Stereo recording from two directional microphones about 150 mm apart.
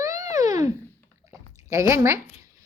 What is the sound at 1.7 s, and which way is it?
Speech, 20° right (ahead or behind).